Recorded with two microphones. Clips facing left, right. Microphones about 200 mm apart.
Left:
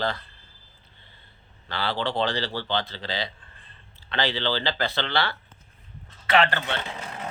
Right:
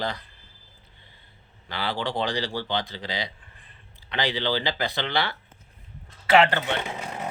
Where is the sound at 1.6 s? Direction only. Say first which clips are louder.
Left 1 dB; 15° right (ahead or behind).